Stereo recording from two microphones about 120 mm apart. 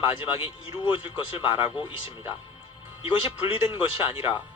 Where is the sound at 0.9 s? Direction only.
45° left (ahead or behind).